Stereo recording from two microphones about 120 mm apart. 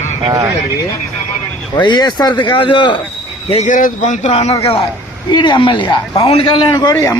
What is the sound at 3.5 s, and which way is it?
A man's voice, 75° left (ahead or behind).